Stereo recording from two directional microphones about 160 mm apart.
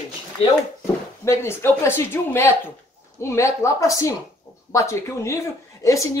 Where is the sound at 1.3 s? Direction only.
15° left (ahead or behind).